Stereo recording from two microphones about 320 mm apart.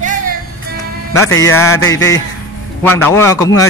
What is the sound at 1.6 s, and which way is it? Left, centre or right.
Speech, centre.